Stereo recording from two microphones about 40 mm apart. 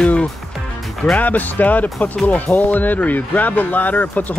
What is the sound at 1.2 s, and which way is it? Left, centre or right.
Speech, left.